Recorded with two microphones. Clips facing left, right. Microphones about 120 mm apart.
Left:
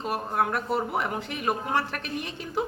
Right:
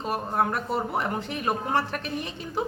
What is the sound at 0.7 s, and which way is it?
Speech, 5° left (ahead or behind).